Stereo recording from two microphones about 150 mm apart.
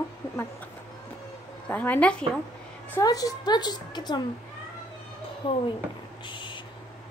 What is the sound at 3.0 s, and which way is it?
A woman's voice, 25° left (ahead or behind).